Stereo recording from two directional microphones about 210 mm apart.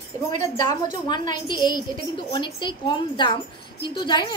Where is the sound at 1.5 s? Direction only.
20° left (ahead or behind).